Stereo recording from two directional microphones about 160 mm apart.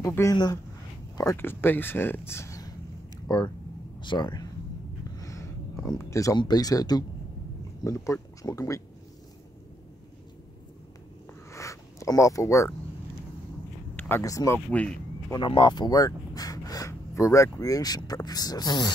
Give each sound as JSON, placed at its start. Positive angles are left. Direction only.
{"t": 0.0, "sound": "speech", "side_deg": 20}
{"t": 11.5, "sound": "a sound", "side_deg": 20}
{"t": 13.9, "sound": "speech", "side_deg": 15}
{"t": 14.7, "sound": "speech", "side_deg": 10}
{"t": 15.3, "sound": "speech", "side_deg": 30}